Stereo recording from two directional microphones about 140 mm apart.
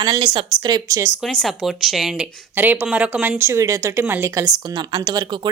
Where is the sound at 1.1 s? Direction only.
5° left (ahead or behind); by 4.5 s 20° right (ahead or behind).